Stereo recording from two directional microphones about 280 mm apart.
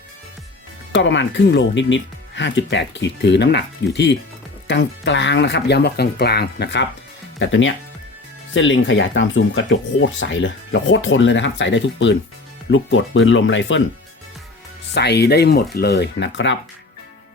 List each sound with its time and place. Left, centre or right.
0.9 s speech: left
14.9 s speech: left